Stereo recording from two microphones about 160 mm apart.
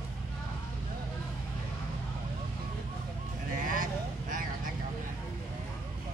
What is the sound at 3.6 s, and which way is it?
Vehicle, 60° right (ahead or behind).